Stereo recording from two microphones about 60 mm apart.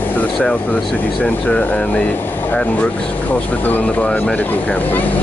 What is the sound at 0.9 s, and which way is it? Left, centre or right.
Air conditioning, left.